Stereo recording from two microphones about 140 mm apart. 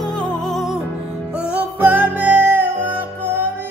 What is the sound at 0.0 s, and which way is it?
Music, 5° left (ahead or behind).